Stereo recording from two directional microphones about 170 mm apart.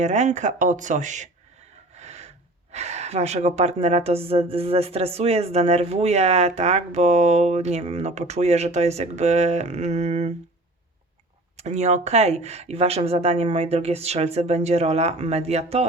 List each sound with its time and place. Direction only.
0.0 s speech: 40° right (ahead or behind)
2.0 s filing: 40° right (ahead or behind)
2.7 s a woman's voice: 40° right (ahead or behind)
11.5 s a woman's voice: 40° right (ahead or behind)